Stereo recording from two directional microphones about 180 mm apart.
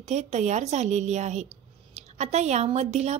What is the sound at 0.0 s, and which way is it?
Speech, 40° right (ahead or behind).